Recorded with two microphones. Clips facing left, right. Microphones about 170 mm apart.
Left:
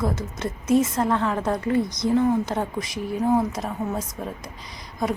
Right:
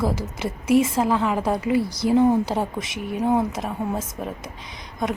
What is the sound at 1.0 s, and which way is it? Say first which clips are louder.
A woman's voice: right 2 dB; 5° right (ahead or behind).